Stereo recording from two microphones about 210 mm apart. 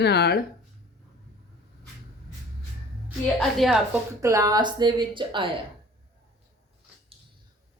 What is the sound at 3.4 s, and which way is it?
Speech, centre (ahead or behind).